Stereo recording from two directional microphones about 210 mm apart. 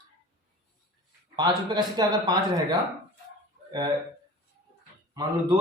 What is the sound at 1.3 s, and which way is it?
A man's voice, 20° right (ahead or behind).